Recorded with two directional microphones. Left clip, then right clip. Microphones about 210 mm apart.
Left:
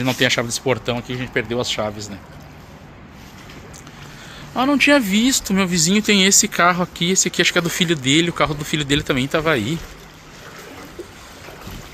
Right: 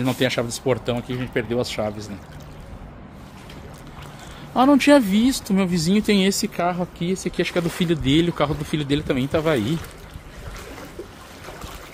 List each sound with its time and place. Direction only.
0.0 s speech: 5° right (ahead or behind)
4.6 s speech: 30° right (ahead or behind)
5.0 s speech: 15° right (ahead or behind)